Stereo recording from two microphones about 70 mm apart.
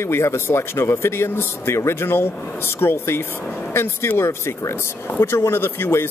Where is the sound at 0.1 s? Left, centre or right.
Left.